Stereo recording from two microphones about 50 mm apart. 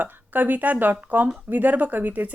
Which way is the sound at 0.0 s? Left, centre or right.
Right.